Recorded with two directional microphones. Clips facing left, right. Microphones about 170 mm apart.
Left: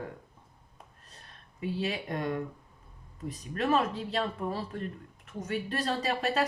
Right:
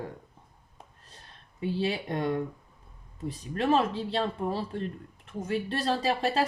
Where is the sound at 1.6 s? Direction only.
30° right (ahead or behind).